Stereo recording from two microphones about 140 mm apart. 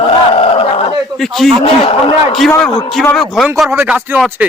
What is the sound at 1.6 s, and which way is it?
Groan, 40° left (ahead or behind).